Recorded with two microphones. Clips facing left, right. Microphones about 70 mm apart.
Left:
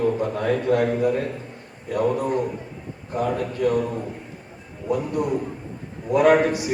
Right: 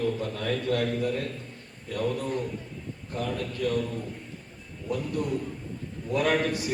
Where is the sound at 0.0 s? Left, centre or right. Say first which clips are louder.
Left 7 dB; left.